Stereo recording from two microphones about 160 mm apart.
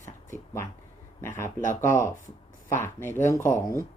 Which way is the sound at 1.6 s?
55° left (ahead or behind).